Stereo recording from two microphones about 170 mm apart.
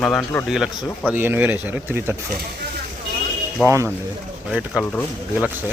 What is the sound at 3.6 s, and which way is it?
Speech, 15° right (ahead or behind).